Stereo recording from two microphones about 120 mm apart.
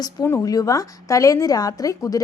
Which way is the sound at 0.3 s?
25° left (ahead or behind).